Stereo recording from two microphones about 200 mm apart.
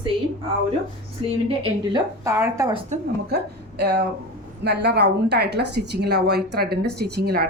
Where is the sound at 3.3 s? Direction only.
55° right (ahead or behind).